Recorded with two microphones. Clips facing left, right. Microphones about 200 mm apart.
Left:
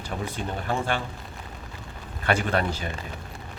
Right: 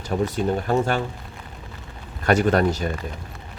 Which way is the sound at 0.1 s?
45° right (ahead or behind).